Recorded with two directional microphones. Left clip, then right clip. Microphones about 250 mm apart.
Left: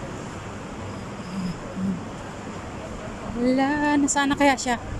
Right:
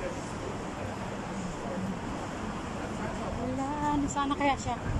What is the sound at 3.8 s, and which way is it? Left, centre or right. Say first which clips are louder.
Speech: left 8 dB; centre.